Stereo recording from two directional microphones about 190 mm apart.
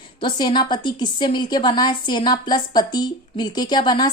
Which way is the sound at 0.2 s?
25° left (ahead or behind).